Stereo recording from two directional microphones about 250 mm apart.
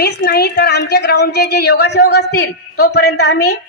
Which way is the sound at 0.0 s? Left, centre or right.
Left.